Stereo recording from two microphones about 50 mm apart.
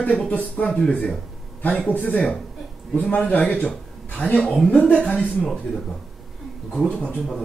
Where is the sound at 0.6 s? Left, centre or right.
Centre.